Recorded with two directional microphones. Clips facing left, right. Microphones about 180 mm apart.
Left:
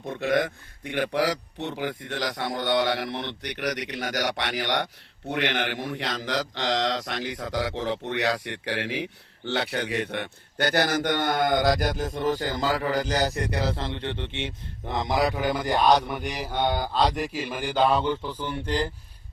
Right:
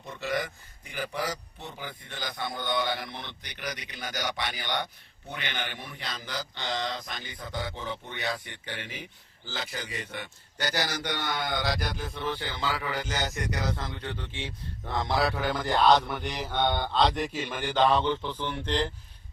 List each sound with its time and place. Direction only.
0.0 s a man's voice: 55° left (ahead or behind); by 18.9 s 10° left (ahead or behind)